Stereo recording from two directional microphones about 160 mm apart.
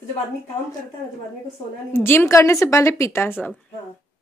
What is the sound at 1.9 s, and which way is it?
A woman's voice, 15° left (ahead or behind).